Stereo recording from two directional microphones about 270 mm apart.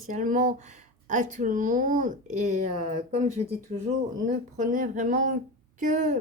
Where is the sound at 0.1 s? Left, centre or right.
Right.